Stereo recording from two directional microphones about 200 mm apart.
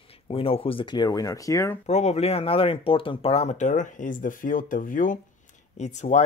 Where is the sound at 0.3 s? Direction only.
30° left (ahead or behind).